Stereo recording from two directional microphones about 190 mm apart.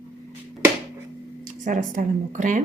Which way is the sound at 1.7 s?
40° right (ahead or behind).